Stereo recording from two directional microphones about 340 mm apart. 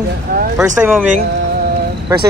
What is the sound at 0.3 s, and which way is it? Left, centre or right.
Speech, right.